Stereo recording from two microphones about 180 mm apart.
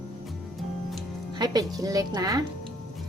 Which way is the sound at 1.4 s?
20° right (ahead or behind).